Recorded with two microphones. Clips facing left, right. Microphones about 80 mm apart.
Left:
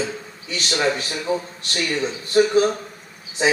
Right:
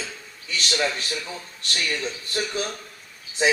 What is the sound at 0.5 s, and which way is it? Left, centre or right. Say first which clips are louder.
Speech: left 4 dB; left.